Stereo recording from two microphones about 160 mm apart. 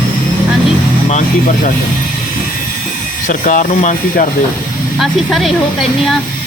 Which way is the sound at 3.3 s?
55° left (ahead or behind).